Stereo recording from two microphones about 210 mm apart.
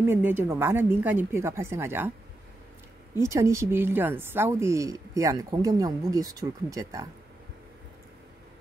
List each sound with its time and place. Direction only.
0.0 s a woman's voice: 10° right (ahead or behind)
3.2 s a woman's voice: 15° right (ahead or behind)